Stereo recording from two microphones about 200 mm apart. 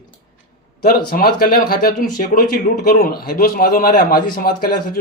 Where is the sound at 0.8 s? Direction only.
50° left (ahead or behind).